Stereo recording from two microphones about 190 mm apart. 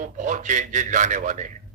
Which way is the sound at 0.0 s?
40° right (ahead or behind).